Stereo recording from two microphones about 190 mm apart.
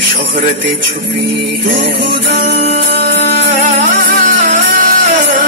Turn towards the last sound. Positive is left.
turn(degrees=-45)  # may be behind; listen again after turning